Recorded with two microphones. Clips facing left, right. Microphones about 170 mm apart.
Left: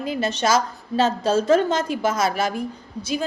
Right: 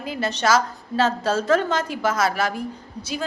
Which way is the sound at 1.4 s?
25° left (ahead or behind).